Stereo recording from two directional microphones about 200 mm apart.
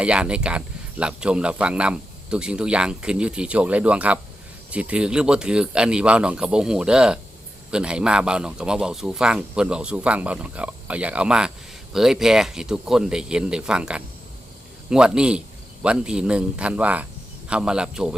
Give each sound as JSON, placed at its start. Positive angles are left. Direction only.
{"t": 0.0, "sound": "speech", "side_deg": -5}